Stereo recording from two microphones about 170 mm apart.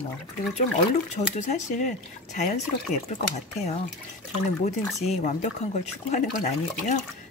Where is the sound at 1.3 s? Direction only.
45° left (ahead or behind).